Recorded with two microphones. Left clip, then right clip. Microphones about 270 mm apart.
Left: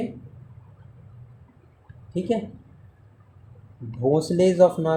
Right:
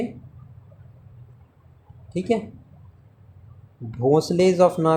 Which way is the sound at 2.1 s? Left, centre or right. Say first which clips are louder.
Right 2 dB; centre.